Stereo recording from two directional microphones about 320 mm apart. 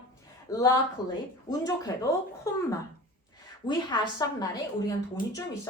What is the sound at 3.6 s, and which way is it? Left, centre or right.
Speech, centre.